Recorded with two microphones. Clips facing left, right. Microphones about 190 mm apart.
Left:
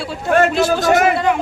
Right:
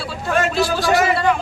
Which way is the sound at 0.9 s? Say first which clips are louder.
Left 3 dB; 55° left (ahead or behind).